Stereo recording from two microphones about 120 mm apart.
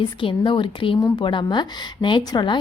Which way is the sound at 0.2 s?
45° left (ahead or behind).